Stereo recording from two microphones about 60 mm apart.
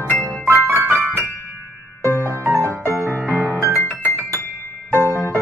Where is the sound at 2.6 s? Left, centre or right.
Right.